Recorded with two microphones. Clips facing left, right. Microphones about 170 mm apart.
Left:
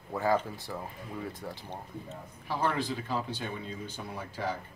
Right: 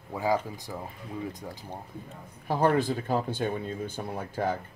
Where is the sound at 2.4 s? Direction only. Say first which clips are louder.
Right 7 dB; 50° right (ahead or behind).